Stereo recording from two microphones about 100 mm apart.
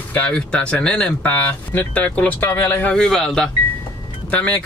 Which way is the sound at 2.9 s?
10° left (ahead or behind).